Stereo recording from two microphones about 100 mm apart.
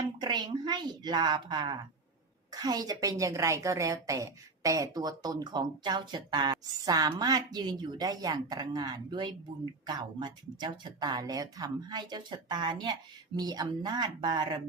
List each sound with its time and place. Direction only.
0.2 s a woman's voice: 45° right (ahead or behind)